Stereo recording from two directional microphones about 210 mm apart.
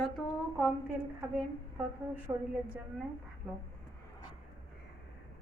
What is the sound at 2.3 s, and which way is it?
Speech, 20° right (ahead or behind).